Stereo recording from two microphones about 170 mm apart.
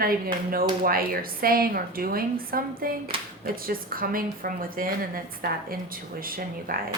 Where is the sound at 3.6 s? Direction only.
60° right (ahead or behind).